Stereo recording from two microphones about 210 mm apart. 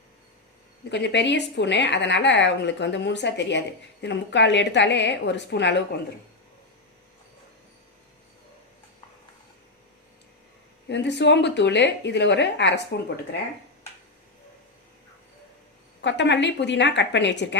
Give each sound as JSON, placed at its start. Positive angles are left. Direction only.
{"t": 0.9, "sound": "a woman's voice", "side_deg": 55}
{"t": 10.8, "sound": "a woman's voice", "side_deg": 55}
{"t": 16.0, "sound": "a woman's voice", "side_deg": 60}